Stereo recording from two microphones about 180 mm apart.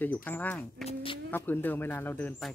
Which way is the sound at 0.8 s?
30° left (ahead or behind).